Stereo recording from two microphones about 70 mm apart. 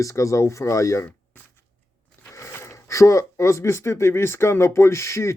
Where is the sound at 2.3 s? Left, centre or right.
Left.